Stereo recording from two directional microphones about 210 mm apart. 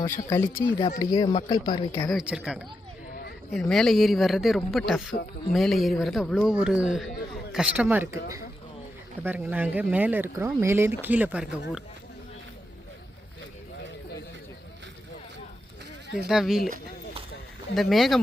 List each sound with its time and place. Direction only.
0.0 s speech: 10° left (ahead or behind)
2.0 s speech: 5° right (ahead or behind)
9.2 s speech: 10° right (ahead or behind)
16.1 s speech: centre (ahead or behind)
17.7 s speech: centre (ahead or behind)